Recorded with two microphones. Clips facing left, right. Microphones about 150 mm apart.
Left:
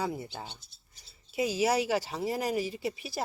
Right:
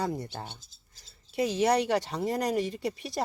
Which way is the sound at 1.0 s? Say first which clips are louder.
Right 1 dB; 90° right.